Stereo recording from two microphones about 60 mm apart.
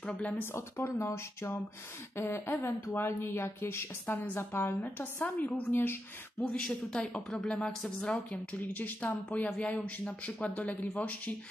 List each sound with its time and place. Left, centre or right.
0.6 s a woman's voice: left
5.2 s a woman's voice: left
6.4 s speech: centre
8.5 s a man's voice: left